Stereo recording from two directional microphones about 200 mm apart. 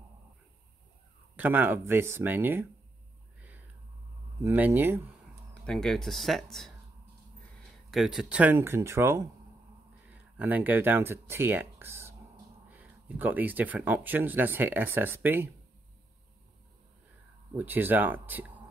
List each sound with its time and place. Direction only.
1.3 s speech: 10° right (ahead or behind)
3.3 s whispering: 10° right (ahead or behind)
4.4 s speech: 10° right (ahead or behind)
5.5 s speech: 5° left (ahead or behind)
7.9 s speech: centre (ahead or behind)
17.6 s speech: 10° right (ahead or behind)